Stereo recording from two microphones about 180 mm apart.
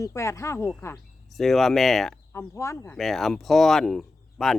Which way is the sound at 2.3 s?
15° left (ahead or behind).